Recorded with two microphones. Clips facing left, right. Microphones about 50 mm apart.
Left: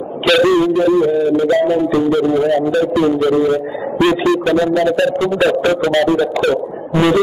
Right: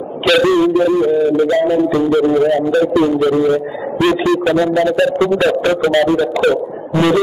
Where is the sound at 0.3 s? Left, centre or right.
Centre.